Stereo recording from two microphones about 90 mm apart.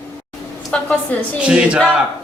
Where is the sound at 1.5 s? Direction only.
10° right (ahead or behind).